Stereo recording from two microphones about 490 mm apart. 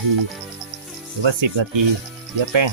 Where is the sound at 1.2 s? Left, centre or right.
Right.